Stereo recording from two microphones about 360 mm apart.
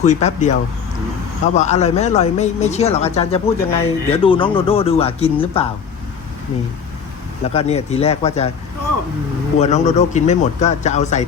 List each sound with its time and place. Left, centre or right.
0.0 s speech: centre
1.5 s speech: centre
7.5 s speech: centre
9.6 s speech: centre